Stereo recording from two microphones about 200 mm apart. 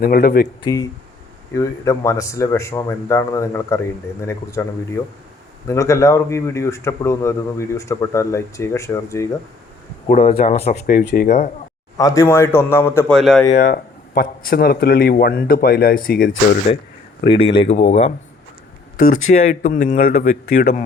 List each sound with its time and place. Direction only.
0.0 s speech: 50° left (ahead or behind)
0.6 s speech: 15° left (ahead or behind)
10.1 s speech: 35° left (ahead or behind)
10.8 s speech: 45° left (ahead or behind)
11.9 s speech: 15° left (ahead or behind)
13.1 s speech: centre (ahead or behind)
13.6 s speech: 45° left (ahead or behind)
16.7 s speech: 30° left (ahead or behind)